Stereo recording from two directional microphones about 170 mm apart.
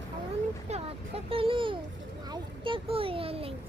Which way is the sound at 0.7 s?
35° right (ahead or behind).